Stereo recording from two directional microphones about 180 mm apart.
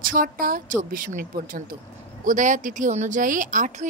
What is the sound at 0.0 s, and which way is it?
Speech, 50° right (ahead or behind).